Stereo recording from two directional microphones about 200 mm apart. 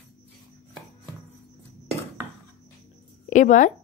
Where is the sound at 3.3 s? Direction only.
40° left (ahead or behind).